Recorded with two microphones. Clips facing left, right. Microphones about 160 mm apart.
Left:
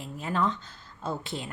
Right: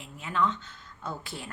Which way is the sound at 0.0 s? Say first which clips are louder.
Left 1 dB; 40° left (ahead or behind).